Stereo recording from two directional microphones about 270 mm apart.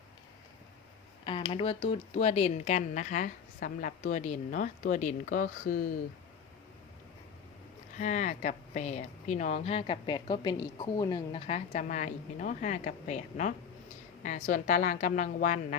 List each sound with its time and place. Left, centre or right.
1.2 s speech: centre; by 5.8 s left
7.9 s speech: left